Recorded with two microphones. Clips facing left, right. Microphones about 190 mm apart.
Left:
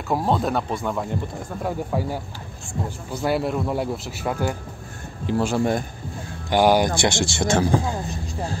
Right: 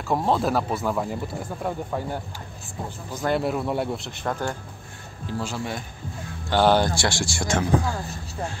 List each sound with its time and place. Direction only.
0.1 s speech: centre (ahead or behind)
5.2 s speech: 55° left (ahead or behind)
6.5 s speech: 15° left (ahead or behind); by 7.9 s 30° left (ahead or behind)